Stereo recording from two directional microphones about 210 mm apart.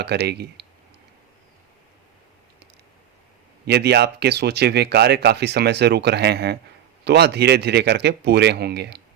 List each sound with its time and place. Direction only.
0.0 s speech: 50° right (ahead or behind)
3.7 s speech: 50° right (ahead or behind)